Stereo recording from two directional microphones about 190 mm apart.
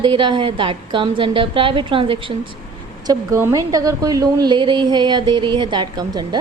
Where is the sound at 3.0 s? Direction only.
15° right (ahead or behind).